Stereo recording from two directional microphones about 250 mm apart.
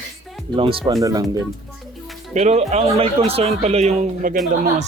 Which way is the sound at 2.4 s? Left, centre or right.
Right.